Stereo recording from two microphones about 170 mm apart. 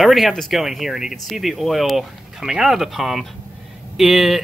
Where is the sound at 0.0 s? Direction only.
Centre (ahead or behind).